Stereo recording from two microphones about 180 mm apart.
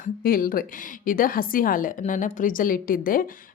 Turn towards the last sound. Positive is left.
turn(degrees=50)  # may be behind; listen again after turning